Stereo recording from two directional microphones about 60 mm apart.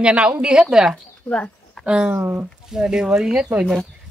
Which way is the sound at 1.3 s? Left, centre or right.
Centre.